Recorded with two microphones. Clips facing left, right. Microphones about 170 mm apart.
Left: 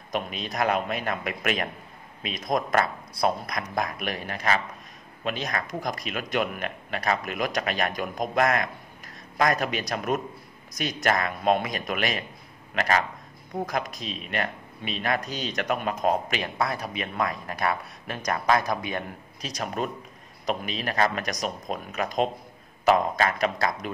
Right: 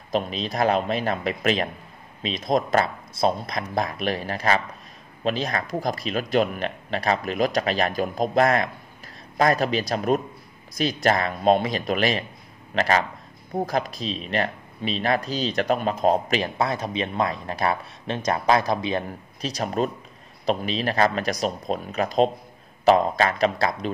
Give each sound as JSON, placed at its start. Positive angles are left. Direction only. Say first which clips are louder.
{"t": 0.1, "sound": "speech", "louder": "right 5 dB", "side_deg": -30}